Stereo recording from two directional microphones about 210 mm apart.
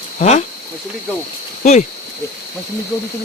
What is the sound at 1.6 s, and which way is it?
Speech, 35° left (ahead or behind).